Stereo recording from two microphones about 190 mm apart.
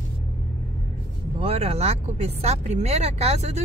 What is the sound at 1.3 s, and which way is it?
Speech, 30° right (ahead or behind).